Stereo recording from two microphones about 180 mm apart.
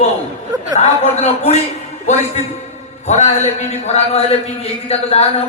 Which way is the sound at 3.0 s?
40° left (ahead or behind).